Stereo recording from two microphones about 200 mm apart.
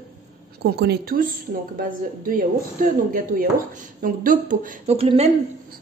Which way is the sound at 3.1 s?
45° right (ahead or behind).